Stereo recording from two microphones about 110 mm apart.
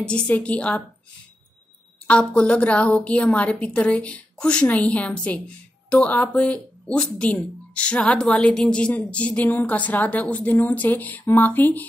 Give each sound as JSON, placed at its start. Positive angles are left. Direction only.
{"t": 0.0, "sound": "speech", "side_deg": 10}
{"t": 2.0, "sound": "speech", "side_deg": 10}